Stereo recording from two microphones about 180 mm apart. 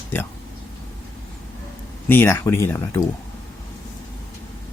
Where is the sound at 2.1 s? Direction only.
15° left (ahead or behind).